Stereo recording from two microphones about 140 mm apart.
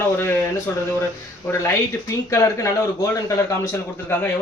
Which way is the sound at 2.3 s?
20° left (ahead or behind).